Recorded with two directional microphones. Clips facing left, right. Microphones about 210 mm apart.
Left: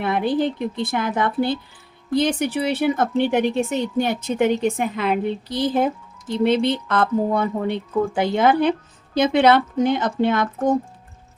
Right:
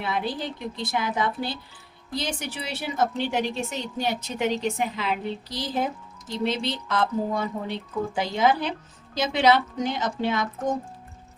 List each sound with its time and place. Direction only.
0.0 s speech: 55° left (ahead or behind)